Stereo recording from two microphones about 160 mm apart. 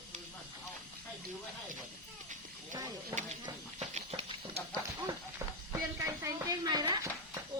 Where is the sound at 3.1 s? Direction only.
20° right (ahead or behind).